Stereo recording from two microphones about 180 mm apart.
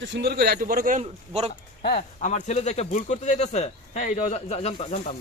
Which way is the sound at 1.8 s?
50° left (ahead or behind).